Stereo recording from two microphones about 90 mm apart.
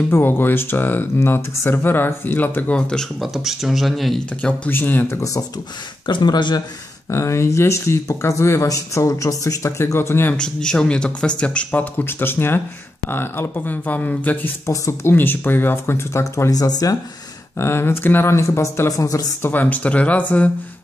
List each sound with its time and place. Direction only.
0.1 s speech: 25° left (ahead or behind)
3.2 s speech: centre (ahead or behind)
4.4 s speech: 20° left (ahead or behind)
5.1 s speech: 35° left (ahead or behind)
6.0 s speech: 55° left (ahead or behind)
7.1 s speech: 30° left (ahead or behind)
10.3 s speech: 10° left (ahead or behind)
14.7 s speech: 30° left (ahead or behind)
16.5 s speech: 45° left (ahead or behind)
17.6 s speech: 25° left (ahead or behind)
19.5 s speech: 15° left (ahead or behind)